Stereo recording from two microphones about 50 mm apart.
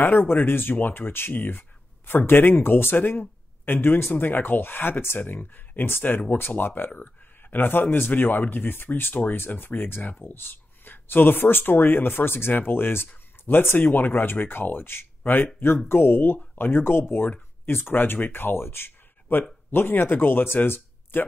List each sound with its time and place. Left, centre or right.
0.0 s speech: left
9.2 s speech: left